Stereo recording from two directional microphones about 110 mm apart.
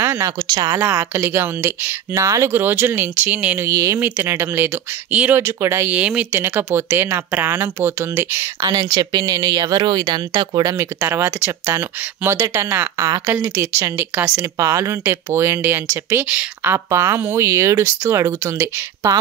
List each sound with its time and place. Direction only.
0.0 s a sound: 25° right (ahead or behind)
0.5 s speech: 40° right (ahead or behind)
0.7 s speech: 20° right (ahead or behind)
3.6 s speech: 30° right (ahead or behind)
5.9 s speech: 15° right (ahead or behind)
8.5 s speech: 35° right (ahead or behind)
11.0 s speech: 20° right (ahead or behind)
12.9 s speech: 30° right (ahead or behind)
14.1 s speech: 10° right (ahead or behind)
14.4 s speech: 30° right (ahead or behind)
16.7 s speech: 25° right (ahead or behind)